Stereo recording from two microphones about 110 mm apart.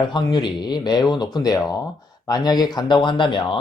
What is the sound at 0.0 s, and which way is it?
Speech, 45° left (ahead or behind).